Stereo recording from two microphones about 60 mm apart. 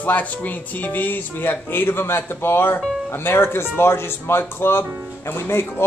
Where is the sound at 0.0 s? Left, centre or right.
Left.